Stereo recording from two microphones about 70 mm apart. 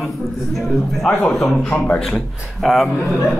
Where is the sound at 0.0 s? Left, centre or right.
Centre.